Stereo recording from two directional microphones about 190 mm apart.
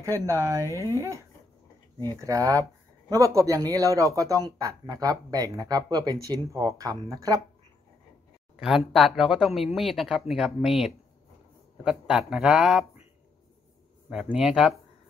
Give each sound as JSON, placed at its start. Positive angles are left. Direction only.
{"t": 0.0, "sound": "speech", "side_deg": -15}
{"t": 2.1, "sound": "speech", "side_deg": -15}
{"t": 8.5, "sound": "speech", "side_deg": 0}
{"t": 14.1, "sound": "speech", "side_deg": 0}